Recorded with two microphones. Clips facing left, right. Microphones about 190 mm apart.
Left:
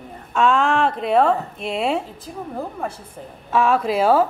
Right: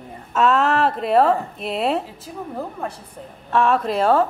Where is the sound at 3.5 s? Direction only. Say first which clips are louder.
Even; centre (ahead or behind).